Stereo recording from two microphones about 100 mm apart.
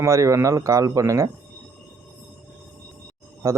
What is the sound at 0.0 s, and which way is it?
A man's voice, 30° right (ahead or behind).